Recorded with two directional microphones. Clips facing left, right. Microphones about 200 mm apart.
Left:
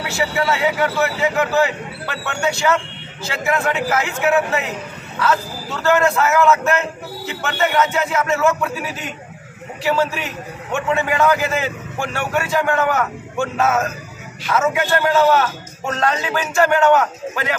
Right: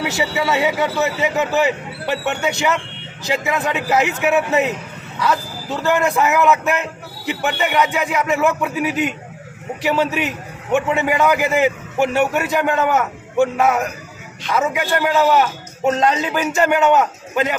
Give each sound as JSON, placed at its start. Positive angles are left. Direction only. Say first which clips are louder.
{"t": 0.1, "sound": "a man's voice", "louder": "even", "side_deg": -20}